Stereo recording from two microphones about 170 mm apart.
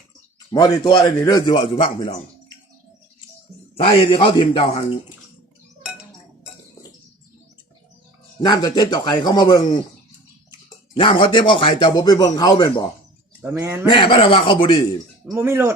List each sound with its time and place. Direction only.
0.5 s speech: 25° left (ahead or behind)
4.0 s speech: 30° left (ahead or behind)
5.8 s chink: 5° right (ahead or behind)
8.4 s speech: 25° left (ahead or behind)
10.9 s speech: 30° left (ahead or behind)
13.4 s speech: 15° right (ahead or behind)
13.8 s speech: 30° left (ahead or behind)
15.3 s speech: 15° right (ahead or behind)